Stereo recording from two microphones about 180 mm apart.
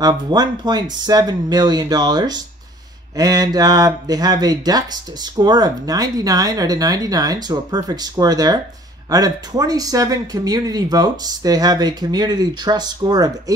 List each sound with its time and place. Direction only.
0.0 s speech: 25° right (ahead or behind)